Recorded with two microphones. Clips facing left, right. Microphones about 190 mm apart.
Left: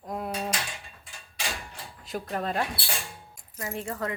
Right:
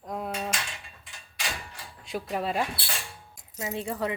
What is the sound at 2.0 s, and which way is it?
Speech, 5° right (ahead or behind).